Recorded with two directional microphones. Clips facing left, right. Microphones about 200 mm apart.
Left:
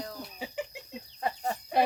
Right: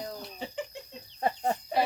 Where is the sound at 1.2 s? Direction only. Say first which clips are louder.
Right 4 dB; 30° right (ahead or behind).